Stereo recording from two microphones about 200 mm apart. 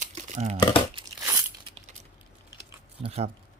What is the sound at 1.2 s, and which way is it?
Crunch, 15° right (ahead or behind).